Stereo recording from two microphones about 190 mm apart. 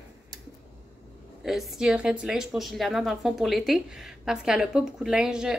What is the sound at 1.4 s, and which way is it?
A woman's voice, centre (ahead or behind).